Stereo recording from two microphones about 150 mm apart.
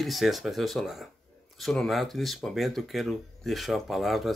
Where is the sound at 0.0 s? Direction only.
Centre (ahead or behind).